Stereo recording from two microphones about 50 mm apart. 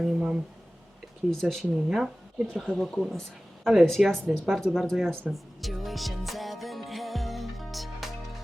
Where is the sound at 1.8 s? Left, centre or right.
Centre.